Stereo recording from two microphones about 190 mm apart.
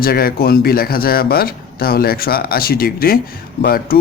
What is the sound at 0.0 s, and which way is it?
Speech, 50° left (ahead or behind).